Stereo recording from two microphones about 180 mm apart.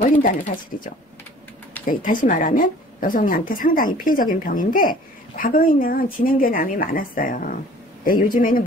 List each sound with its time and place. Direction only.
1.9 s a woman's voice: 50° left (ahead or behind)